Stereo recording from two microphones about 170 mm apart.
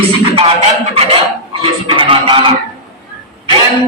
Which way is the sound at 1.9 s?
30° right (ahead or behind).